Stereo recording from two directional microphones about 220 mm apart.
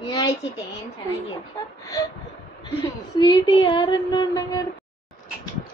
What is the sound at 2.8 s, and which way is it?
A woman's voice, 20° left (ahead or behind).